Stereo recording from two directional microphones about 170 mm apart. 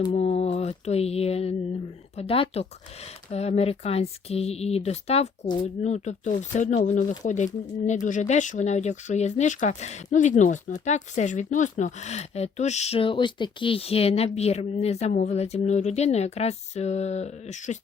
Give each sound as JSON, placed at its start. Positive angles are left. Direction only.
{"t": 0.0, "sound": "mantra", "side_deg": 35}
{"t": 2.1, "sound": "speech", "side_deg": 35}